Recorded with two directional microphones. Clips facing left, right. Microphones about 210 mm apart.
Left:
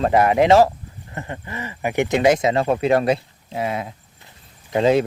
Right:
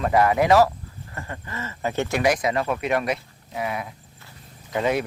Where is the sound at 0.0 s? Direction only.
25° left (ahead or behind).